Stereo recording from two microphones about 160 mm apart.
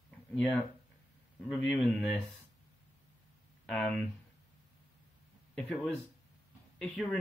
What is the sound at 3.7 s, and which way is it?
Speech, 5° left (ahead or behind).